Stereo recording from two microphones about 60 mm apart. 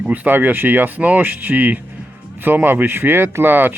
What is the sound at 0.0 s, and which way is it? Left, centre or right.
Speech, right.